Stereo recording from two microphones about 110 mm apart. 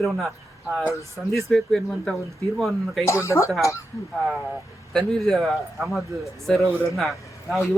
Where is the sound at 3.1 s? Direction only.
25° left (ahead or behind).